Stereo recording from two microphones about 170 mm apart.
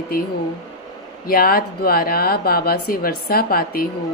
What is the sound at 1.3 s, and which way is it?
Speech, 60° left (ahead or behind).